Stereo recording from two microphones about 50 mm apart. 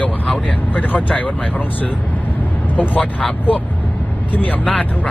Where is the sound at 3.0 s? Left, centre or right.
Centre.